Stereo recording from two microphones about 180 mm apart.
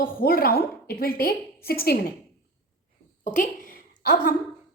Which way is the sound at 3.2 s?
45° left (ahead or behind).